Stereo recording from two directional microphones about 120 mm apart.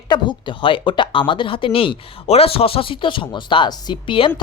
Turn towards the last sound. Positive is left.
turn(degrees=45)  # may be behind; listen again after turning